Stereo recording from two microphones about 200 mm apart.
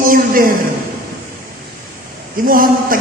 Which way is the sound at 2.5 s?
45° right (ahead or behind).